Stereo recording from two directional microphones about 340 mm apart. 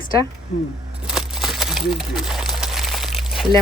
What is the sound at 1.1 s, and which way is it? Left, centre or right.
Crumpling, centre.